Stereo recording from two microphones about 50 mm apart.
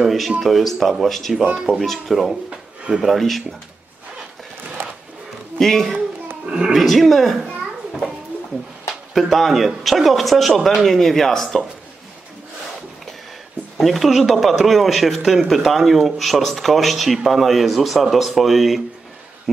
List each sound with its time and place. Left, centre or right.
0.0 s speech: centre
2.5 s a sound: right
3.0 s speech: centre
4.8 s a sound: right
5.6 s speech: centre
9.3 s speech: centre
13.7 s speech: centre